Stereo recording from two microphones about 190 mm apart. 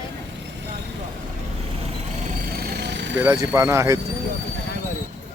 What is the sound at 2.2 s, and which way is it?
Vehicle, 55° right (ahead or behind).